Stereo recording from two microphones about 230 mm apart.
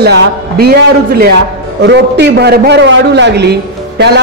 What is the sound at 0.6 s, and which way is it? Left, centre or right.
A man's voice, right.